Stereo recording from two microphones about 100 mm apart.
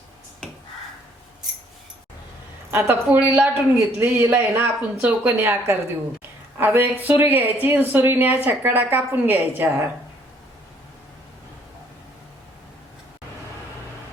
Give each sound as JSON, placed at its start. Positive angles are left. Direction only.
{"t": 2.7, "sound": "speech", "side_deg": -20}